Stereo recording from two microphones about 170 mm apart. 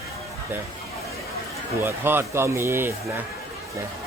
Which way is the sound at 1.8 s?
15° right (ahead or behind).